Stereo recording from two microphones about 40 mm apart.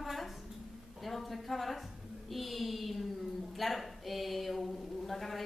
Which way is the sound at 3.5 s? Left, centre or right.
Centre.